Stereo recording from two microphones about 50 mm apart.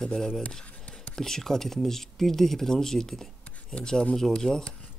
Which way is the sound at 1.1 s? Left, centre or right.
Centre.